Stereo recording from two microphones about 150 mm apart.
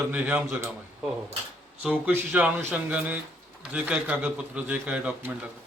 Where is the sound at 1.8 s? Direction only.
10° right (ahead or behind).